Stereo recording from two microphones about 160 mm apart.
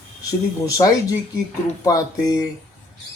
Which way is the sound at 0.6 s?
20° left (ahead or behind).